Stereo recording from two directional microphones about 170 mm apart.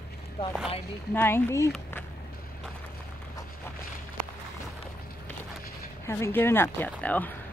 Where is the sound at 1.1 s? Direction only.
15° left (ahead or behind).